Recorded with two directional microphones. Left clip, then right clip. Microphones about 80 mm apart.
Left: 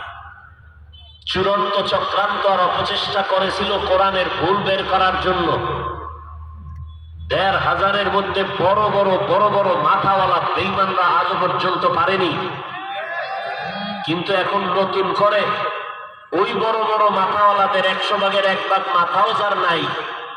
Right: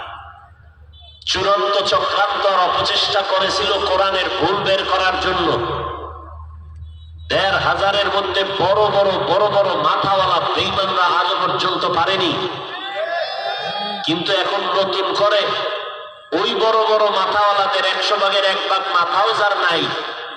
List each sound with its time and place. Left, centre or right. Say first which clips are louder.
1.2 s a man's voice: right 2 dB; right
7.3 s a man's voice: right 1 dB; right
13.7 s a man's voice: right 3 dB; right